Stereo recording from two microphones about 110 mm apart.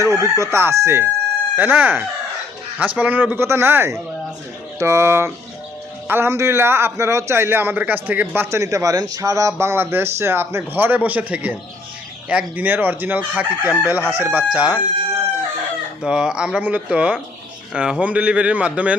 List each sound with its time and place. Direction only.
0.0 s a man's voice: 25° right (ahead or behind)
1.5 s chicken: 15° right (ahead or behind)
2.7 s a man's voice: 15° right (ahead or behind)
12.3 s chicken: 15° right (ahead or behind)
16.0 s chicken: 5° right (ahead or behind)